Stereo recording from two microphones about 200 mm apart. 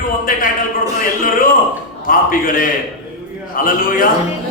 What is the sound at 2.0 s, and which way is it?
A man's voice, 45° left (ahead or behind).